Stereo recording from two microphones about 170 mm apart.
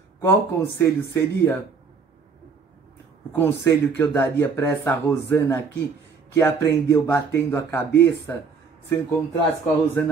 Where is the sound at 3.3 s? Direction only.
10° left (ahead or behind).